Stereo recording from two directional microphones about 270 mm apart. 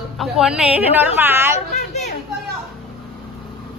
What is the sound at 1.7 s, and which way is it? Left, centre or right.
Speech, left.